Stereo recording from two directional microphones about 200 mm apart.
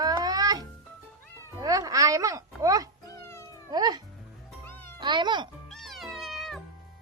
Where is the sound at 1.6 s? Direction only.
15° right (ahead or behind).